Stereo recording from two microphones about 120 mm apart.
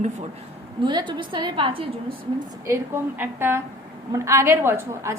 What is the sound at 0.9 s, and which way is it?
A woman's voice, 40° right (ahead or behind).